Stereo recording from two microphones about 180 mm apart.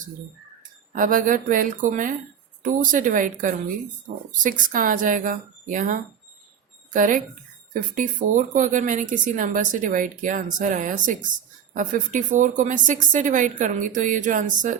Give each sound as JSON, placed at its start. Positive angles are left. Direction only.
{"t": 0.9, "sound": "speech", "side_deg": -45}